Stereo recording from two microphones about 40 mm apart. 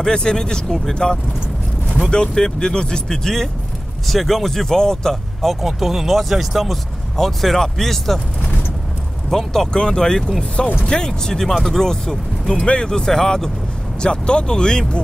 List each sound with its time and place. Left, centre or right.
0.0 s speech: centre
5.6 s speech: centre
9.3 s speech: centre
14.0 s speech: left